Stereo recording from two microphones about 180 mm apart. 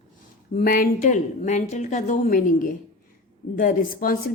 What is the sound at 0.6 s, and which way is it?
A woman's voice, 50° left (ahead or behind).